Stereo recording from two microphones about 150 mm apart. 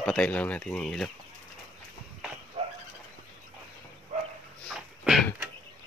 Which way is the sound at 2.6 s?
40° right (ahead or behind).